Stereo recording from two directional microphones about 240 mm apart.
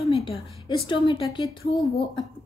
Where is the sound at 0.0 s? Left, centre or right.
Left.